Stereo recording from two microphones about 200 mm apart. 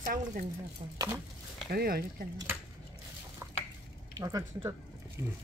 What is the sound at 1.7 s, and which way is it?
Speech, 50° right (ahead or behind).